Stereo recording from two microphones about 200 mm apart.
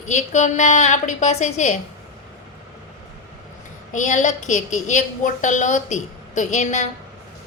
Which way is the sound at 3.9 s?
40° left (ahead or behind).